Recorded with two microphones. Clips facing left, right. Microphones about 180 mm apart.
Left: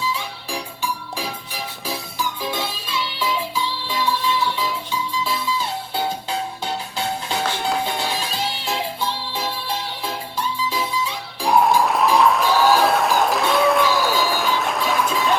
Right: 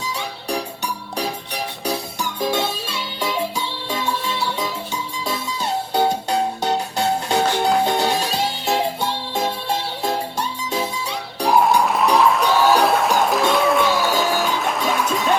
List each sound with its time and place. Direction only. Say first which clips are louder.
3.2 s music: right 2 dB; 45° right (ahead or behind)
5.2 s music: left 1 dB; 45° right (ahead or behind)
11.4 s music: even; centre (ahead or behind)